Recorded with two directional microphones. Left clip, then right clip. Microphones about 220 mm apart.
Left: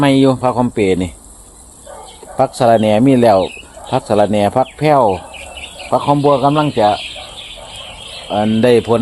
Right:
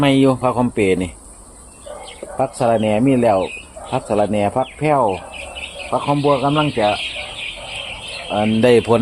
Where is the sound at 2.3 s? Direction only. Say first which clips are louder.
Left 6 dB; 35° left (ahead or behind).